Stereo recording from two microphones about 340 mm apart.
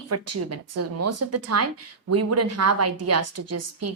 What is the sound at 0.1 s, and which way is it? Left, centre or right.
A woman's voice, right.